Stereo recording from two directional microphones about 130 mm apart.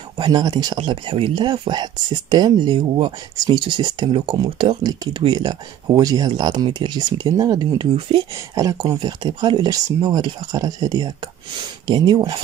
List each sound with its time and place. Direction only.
0.2 s speech: 30° right (ahead or behind)
8.5 s speech: 25° right (ahead or behind)